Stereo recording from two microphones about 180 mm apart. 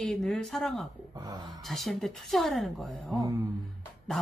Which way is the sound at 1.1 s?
20° right (ahead or behind).